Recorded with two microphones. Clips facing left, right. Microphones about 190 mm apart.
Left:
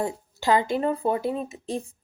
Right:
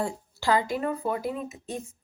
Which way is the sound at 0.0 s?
20° left (ahead or behind).